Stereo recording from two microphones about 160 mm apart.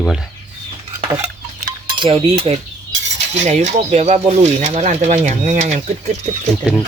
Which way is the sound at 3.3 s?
45° right (ahead or behind).